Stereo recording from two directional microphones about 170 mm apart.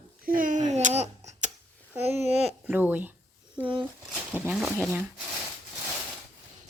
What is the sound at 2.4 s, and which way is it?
Speech, 10° right (ahead or behind).